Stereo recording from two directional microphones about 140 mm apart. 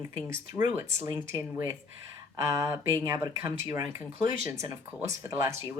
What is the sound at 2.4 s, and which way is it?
Speech, 25° right (ahead or behind).